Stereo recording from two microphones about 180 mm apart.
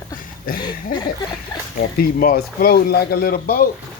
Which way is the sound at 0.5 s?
50° left (ahead or behind).